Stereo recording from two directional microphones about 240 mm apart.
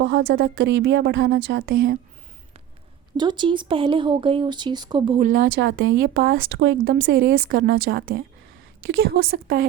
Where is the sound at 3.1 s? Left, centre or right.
Centre; by 5.9 s right.